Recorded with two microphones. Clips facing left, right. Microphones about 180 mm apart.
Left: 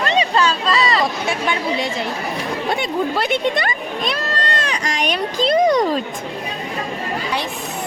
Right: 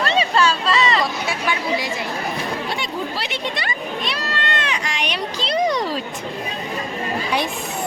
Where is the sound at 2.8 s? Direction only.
55° left (ahead or behind).